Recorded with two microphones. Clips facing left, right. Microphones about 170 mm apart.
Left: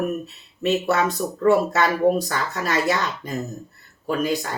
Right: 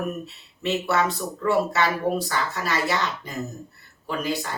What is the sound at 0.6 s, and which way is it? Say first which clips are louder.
Speech: left 3 dB; 45° left (ahead or behind).